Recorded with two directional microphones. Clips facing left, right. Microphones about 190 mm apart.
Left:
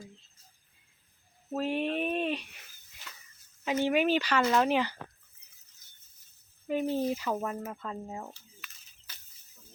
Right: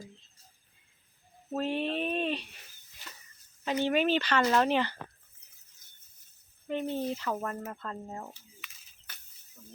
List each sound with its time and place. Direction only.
1.5 s speech: 10° left (ahead or behind)
3.8 s speech: 10° left (ahead or behind)
6.7 s speech: 5° left (ahead or behind)